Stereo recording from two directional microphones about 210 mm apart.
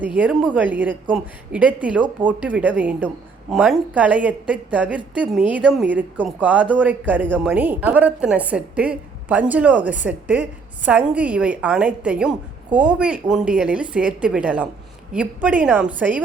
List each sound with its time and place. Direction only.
0.0 s a woman's voice: 5° right (ahead or behind)